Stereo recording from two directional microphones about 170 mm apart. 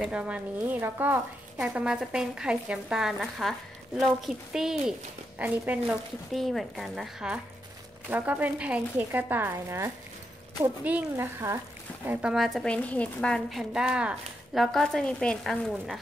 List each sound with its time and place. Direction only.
0.0 s a woman's voice: 5° right (ahead or behind)